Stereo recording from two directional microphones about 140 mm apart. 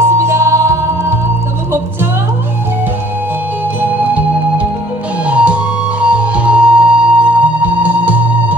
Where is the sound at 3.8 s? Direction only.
10° right (ahead or behind).